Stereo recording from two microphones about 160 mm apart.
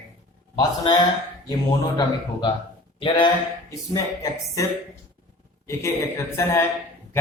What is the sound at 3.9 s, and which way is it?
Speech, 20° left (ahead or behind).